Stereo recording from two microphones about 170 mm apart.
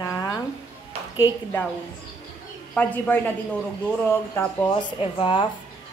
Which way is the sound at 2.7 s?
10° left (ahead or behind).